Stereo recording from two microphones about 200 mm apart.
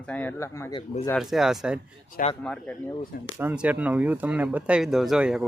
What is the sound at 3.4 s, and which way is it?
Speech, 10° right (ahead or behind).